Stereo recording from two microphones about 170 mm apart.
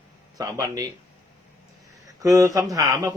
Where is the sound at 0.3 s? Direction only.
20° right (ahead or behind).